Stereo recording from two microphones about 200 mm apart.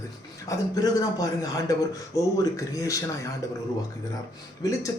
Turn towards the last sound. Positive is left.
turn(degrees=15)  # may be behind; listen again after turning